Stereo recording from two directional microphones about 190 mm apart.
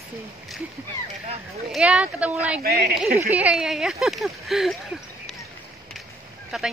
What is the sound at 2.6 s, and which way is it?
Speech, 55° right (ahead or behind).